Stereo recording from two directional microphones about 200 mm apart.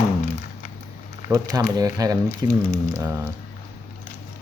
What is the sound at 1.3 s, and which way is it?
Speech, 20° right (ahead or behind).